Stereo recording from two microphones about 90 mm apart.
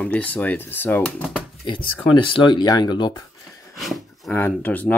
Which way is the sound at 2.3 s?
60° left (ahead or behind).